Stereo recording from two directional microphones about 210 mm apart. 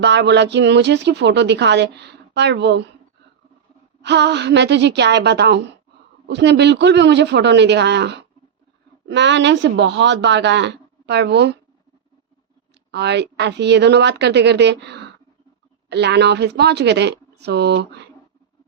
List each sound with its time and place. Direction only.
0.0 s speech: 55° right (ahead or behind)
4.0 s speech: 55° right (ahead or behind)
12.9 s speech: 55° right (ahead or behind)